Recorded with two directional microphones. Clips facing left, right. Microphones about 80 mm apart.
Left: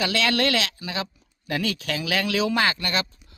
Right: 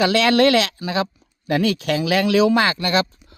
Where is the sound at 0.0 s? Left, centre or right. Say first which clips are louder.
Right 8 dB; right.